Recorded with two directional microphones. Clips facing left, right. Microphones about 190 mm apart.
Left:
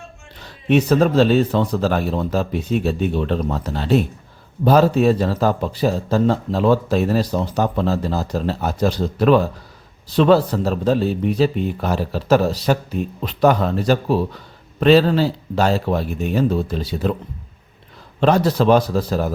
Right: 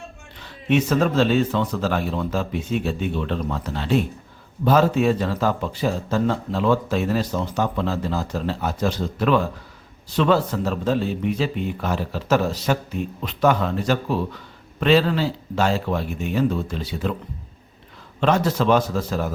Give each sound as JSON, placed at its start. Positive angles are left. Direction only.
{"t": 0.4, "sound": "a man's voice", "side_deg": 40}
{"t": 18.2, "sound": "a man's voice", "side_deg": 35}